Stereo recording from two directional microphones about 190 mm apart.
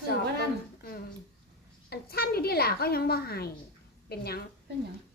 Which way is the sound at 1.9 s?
55° left (ahead or behind).